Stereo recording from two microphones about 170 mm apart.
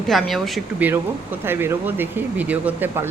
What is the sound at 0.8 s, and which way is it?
Speech, 10° right (ahead or behind).